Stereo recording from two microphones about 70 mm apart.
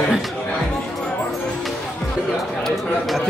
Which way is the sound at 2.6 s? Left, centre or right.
Centre.